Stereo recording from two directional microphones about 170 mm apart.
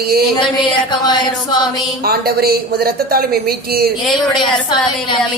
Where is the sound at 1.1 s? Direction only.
25° left (ahead or behind).